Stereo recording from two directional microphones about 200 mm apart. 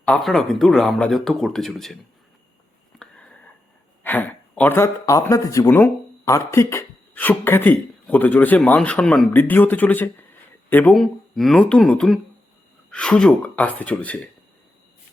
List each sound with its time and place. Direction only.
0.0 s speech: 5° left (ahead or behind)
3.0 s whispering: 5° left (ahead or behind)
4.0 s speech: 10° left (ahead or behind)